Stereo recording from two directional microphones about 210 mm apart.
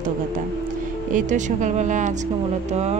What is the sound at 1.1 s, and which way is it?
Speech, 35° right (ahead or behind).